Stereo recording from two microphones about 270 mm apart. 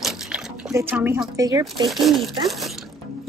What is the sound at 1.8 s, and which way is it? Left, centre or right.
Speech, centre.